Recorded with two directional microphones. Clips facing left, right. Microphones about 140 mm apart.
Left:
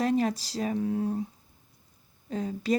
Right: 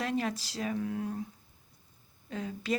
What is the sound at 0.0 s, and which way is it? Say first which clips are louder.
Speech: left 6 dB; 40° left (ahead or behind).